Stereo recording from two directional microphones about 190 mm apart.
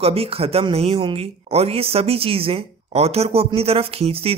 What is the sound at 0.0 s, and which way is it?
Speech, 30° right (ahead or behind).